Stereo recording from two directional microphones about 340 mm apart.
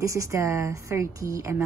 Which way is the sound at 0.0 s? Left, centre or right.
Centre.